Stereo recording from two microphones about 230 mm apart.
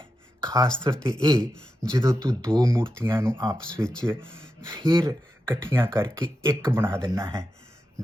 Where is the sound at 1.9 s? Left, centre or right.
Centre.